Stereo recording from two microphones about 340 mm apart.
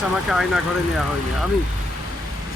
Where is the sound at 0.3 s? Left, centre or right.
Centre.